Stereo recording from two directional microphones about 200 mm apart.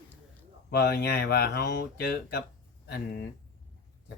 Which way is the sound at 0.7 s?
55° left (ahead or behind).